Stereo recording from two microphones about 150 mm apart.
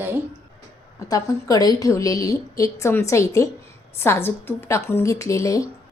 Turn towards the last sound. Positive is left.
turn(degrees=20)  # may be behind; listen again after turning